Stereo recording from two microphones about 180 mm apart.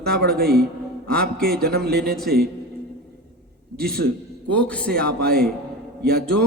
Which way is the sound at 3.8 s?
60° right (ahead or behind).